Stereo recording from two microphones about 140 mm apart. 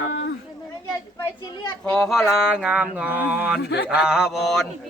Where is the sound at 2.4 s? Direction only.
5° right (ahead or behind).